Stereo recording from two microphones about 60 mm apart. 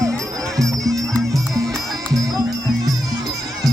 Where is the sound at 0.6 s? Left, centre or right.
Centre.